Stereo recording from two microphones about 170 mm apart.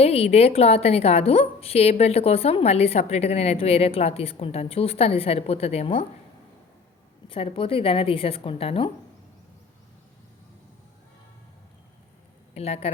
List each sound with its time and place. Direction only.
0.0 s a woman's voice: 35° left (ahead or behind)
7.3 s a woman's voice: 35° left (ahead or behind)
12.5 s a woman's voice: 35° left (ahead or behind)